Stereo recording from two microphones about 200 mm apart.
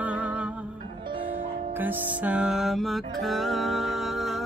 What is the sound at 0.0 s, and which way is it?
Music, 5° right (ahead or behind).